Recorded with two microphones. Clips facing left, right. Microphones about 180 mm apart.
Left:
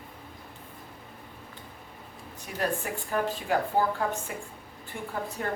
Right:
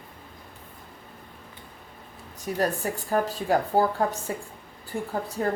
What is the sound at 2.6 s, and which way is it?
A woman's voice, 40° right (ahead or behind).